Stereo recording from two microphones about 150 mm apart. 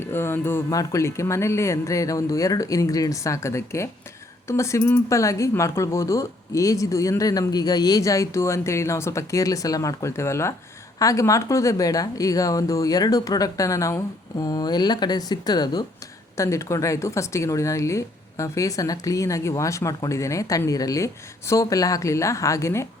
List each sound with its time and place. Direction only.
0.0 s speech: 15° left (ahead or behind)